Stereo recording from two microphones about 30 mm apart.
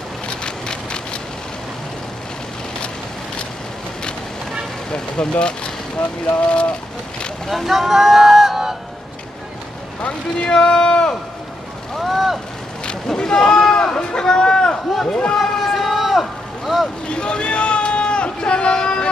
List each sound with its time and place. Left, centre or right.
0.3 s boat: left
4.9 s speech: left
7.4 s speech: centre
10.5 s speech: left
12.0 s speech: centre
13.0 s a sound: centre
15.0 s speech: left
15.3 s vehicle: centre
17.1 s a sound: left